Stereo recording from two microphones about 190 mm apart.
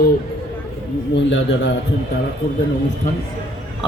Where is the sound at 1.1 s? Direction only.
70° left (ahead or behind).